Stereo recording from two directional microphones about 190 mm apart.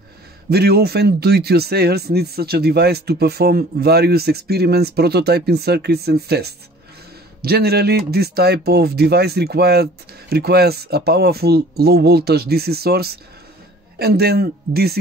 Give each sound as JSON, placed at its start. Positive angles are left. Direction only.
{"t": 0.5, "sound": "speech", "side_deg": -55}